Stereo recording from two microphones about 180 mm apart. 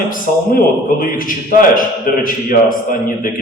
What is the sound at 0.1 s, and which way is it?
A man's voice, 50° left (ahead or behind).